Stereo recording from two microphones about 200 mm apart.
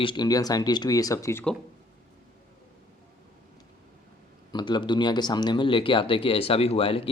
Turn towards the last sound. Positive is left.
turn(degrees=30)  # may be behind; listen again after turning